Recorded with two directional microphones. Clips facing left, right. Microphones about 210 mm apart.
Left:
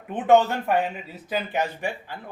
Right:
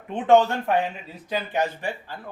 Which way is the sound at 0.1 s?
5° left (ahead or behind).